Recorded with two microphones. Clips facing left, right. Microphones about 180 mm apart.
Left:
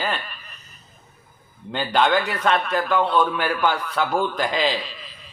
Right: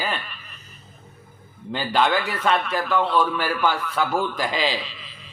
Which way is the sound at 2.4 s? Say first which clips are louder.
Left 1 dB; centre (ahead or behind).